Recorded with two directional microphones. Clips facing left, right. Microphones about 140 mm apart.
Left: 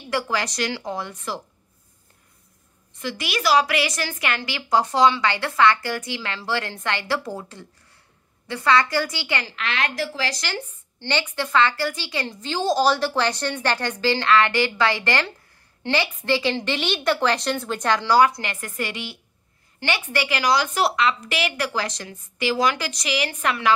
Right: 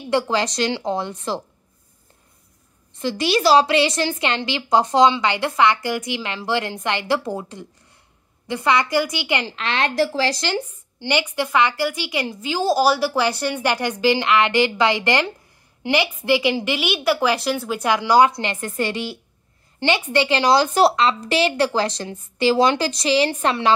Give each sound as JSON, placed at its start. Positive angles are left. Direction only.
{"t": 0.1, "sound": "a woman's voice", "side_deg": -25}
{"t": 3.0, "sound": "a woman's voice", "side_deg": -30}
{"t": 11.0, "sound": "a woman's voice", "side_deg": -15}
{"t": 19.8, "sound": "a woman's voice", "side_deg": -20}